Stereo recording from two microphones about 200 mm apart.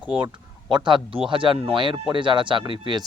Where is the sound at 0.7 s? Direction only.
25° right (ahead or behind).